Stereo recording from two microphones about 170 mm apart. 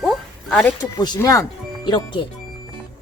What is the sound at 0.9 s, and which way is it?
Speech, 25° left (ahead or behind).